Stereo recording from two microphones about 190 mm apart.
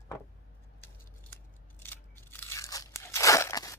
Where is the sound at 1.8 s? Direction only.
10° left (ahead or behind).